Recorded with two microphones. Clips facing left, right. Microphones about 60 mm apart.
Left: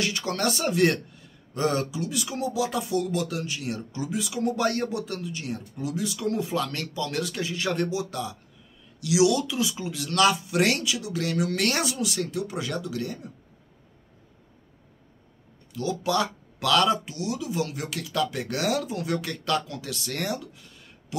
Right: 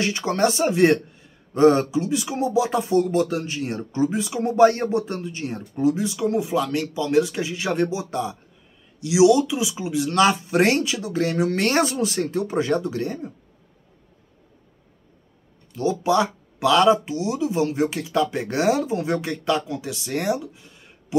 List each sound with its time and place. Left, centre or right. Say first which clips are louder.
0.0 s speech: right 6 dB; right
15.7 s speech: right 6 dB; right